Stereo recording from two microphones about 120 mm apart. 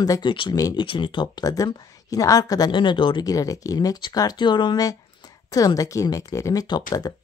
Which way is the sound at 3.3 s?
30° left (ahead or behind).